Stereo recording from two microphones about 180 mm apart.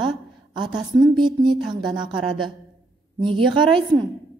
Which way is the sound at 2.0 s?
25° right (ahead or behind).